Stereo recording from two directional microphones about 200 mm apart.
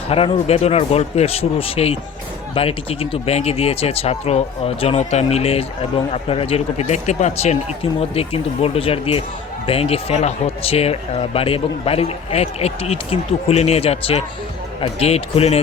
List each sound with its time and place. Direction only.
0.1 s speech: 30° left (ahead or behind)